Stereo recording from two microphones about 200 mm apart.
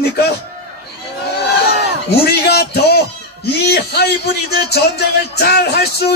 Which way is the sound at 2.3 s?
55° left (ahead or behind).